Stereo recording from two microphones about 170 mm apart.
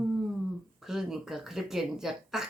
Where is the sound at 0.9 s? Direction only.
Centre (ahead or behind).